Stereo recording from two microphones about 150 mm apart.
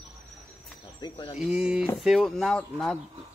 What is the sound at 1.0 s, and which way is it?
Speech, 30° left (ahead or behind).